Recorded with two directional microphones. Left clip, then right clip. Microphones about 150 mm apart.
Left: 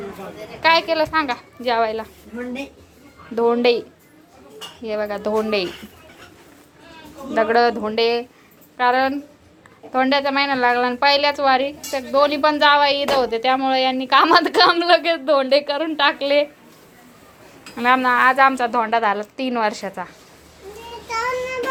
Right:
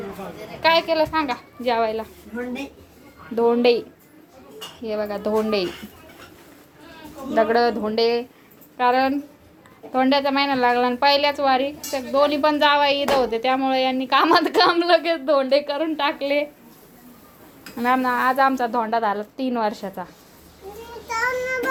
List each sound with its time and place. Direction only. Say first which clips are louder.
0.6 s a woman's voice: left 2 dB; 5° right (ahead or behind)
3.3 s a woman's voice: left 1 dB; 10° right (ahead or behind)
7.3 s a woman's voice: left 2 dB; 5° right (ahead or behind)
17.7 s a woman's voice: left 4 dB; 5° right (ahead or behind)